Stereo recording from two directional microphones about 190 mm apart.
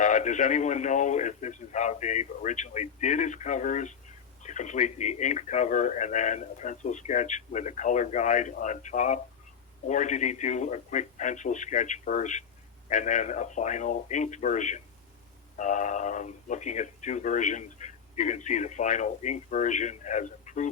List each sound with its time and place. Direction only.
0.0 s speech: 40° left (ahead or behind)